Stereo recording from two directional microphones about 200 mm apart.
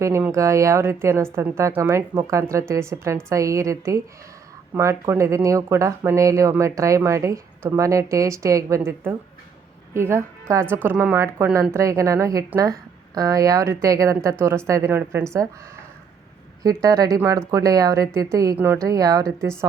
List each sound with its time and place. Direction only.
0.0 s speech: 15° right (ahead or behind)